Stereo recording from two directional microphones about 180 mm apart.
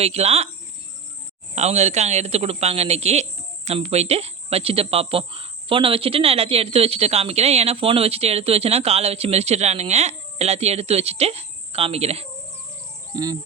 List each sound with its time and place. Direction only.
0.0 s a woman's voice: 35° right (ahead or behind)
1.5 s a woman's voice: 35° right (ahead or behind)
13.1 s speech: 25° right (ahead or behind)